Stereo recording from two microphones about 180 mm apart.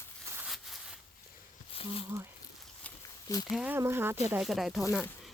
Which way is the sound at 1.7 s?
30° left (ahead or behind).